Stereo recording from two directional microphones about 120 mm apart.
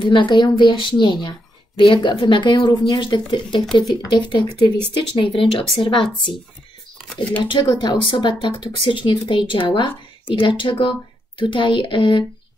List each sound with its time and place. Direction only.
0.0 s speech: 40° left (ahead or behind)
7.0 s speech: 10° left (ahead or behind)
7.6 s speech: 35° left (ahead or behind)